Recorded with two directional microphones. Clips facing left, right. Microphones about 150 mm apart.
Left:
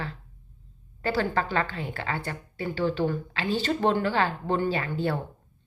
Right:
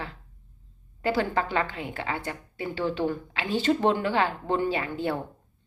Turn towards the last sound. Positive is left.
turn(degrees=-15)  # may be behind; listen again after turning